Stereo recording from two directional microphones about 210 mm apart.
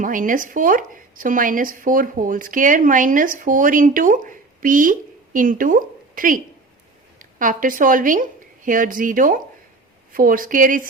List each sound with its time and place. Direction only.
0.0 s a woman's voice: 40° right (ahead or behind)